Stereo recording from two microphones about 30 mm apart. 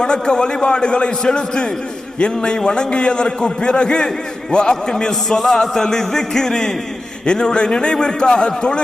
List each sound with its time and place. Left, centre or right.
0.0 s a man's voice: left
4.5 s music: left
7.3 s a man's voice: left
7.9 s music: left